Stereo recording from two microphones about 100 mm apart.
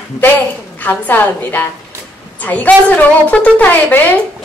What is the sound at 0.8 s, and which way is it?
A woman's voice, 15° left (ahead or behind).